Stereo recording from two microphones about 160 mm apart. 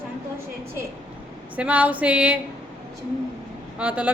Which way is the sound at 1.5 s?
10° right (ahead or behind).